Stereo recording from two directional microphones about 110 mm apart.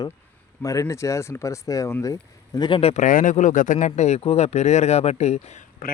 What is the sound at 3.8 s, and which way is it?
Speech, 90° left.